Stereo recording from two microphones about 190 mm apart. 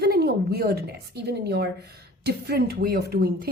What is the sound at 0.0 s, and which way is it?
A woman's voice, 55° right (ahead or behind).